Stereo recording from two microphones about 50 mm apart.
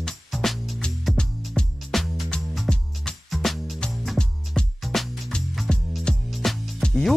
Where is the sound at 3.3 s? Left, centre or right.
Centre.